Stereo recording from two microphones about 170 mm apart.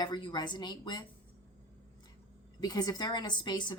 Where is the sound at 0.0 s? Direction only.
25° left (ahead or behind).